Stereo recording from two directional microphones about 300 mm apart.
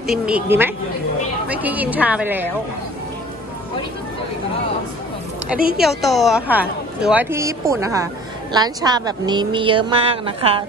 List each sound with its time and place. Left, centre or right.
0.0 s a woman's voice: centre
5.8 s a woman's voice: centre